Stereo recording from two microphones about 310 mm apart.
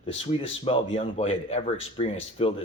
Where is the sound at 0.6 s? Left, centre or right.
Centre.